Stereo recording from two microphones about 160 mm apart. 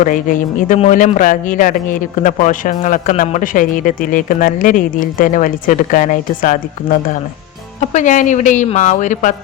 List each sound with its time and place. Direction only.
0.0 s a man's voice: 55° left (ahead or behind)